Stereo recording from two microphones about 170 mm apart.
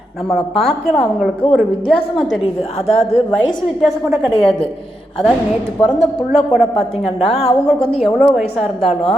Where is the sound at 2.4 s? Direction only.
35° left (ahead or behind).